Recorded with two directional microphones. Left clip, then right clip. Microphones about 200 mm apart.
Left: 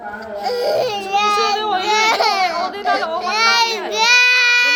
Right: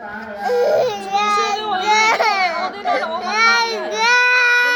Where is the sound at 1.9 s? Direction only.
10° right (ahead or behind).